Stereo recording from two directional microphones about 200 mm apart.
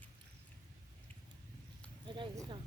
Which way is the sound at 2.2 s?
25° right (ahead or behind).